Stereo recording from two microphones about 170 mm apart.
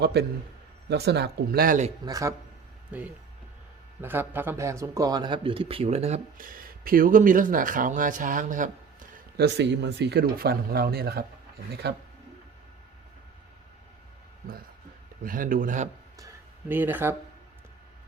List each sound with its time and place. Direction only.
0.0 s speech: 75° right (ahead or behind); by 1.9 s 55° right (ahead or behind)
2.0 s speech: 20° right (ahead or behind)
2.9 s a man's voice: 10° right (ahead or behind); by 9.0 s 50° right (ahead or behind)
9.4 s speech: 90° right; by 11.9 s 75° right (ahead or behind)
15.2 s a man's voice: 55° right (ahead or behind)
16.1 s a sound: 15° right (ahead or behind)